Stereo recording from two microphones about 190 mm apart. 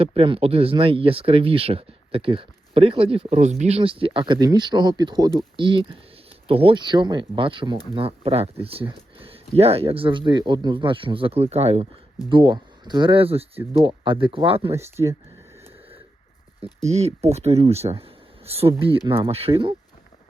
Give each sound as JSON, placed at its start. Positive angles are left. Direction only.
{"t": 0.0, "sound": "speech", "side_deg": -30}
{"t": 14.7, "sound": "speech", "side_deg": -15}
{"t": 16.8, "sound": "speech", "side_deg": -35}